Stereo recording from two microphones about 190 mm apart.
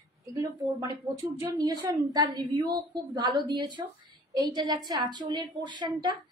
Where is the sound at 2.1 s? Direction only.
20° right (ahead or behind).